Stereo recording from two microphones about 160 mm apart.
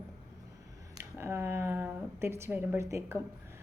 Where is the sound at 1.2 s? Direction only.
15° right (ahead or behind).